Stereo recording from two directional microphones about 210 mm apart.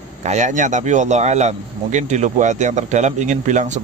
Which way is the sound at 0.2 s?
35° right (ahead or behind).